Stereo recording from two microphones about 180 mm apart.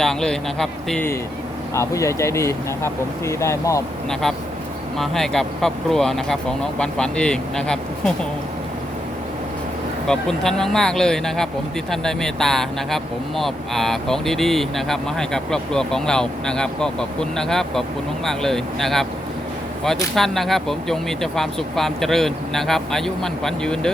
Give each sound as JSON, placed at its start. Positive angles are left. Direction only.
{"t": 0.0, "sound": "speech", "side_deg": 5}
{"t": 1.7, "sound": "speech", "side_deg": 15}
{"t": 4.1, "sound": "speech", "side_deg": 0}
{"t": 10.1, "sound": "speech", "side_deg": 5}